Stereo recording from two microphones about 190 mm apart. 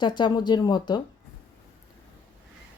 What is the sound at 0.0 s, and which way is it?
Speech, 25° left (ahead or behind).